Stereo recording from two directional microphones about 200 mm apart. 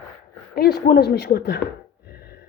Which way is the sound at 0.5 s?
50° left (ahead or behind).